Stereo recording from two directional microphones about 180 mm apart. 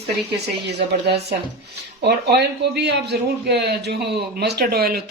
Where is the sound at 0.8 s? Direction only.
65° right (ahead or behind).